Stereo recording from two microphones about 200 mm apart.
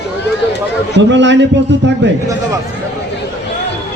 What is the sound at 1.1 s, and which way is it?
Speech, 65° right (ahead or behind).